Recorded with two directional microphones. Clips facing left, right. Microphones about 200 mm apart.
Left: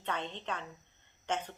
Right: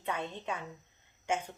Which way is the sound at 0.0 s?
10° right (ahead or behind).